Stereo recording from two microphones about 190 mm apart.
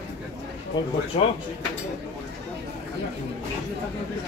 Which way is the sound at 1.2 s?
30° left (ahead or behind).